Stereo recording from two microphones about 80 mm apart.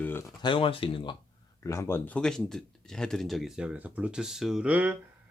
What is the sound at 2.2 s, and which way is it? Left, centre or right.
Speech, centre.